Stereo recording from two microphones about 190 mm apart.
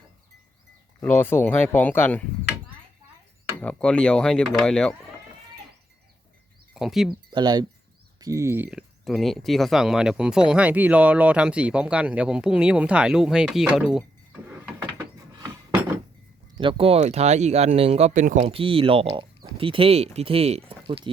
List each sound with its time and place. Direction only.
0.9 s speech: 10° left (ahead or behind)
3.6 s speech: 5° left (ahead or behind)
6.7 s speech: centre (ahead or behind)
7.3 s speech: 20° right (ahead or behind); by 14.0 s 5° right (ahead or behind)
16.6 s speech: 25° right (ahead or behind)
20.7 s a sound: 25° right (ahead or behind)